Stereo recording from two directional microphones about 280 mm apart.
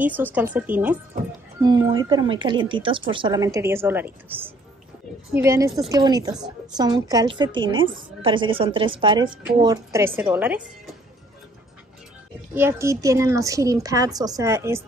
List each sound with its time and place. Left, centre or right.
0.0 s a woman's voice: centre
12.5 s a woman's voice: centre